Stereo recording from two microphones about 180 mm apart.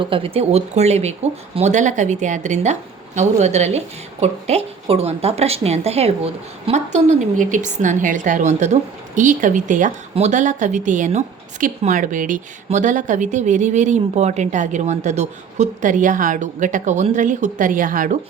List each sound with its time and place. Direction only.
0.0 s speech: 30° right (ahead or behind); by 18.2 s 50° right (ahead or behind)